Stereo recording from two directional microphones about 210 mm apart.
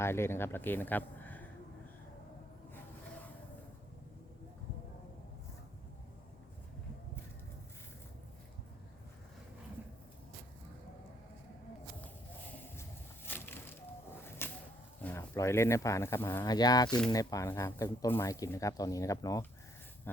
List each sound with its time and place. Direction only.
0.0 s speech: 10° left (ahead or behind)
13.2 s a sound: 10° left (ahead or behind)
15.0 s speech: 10° left (ahead or behind)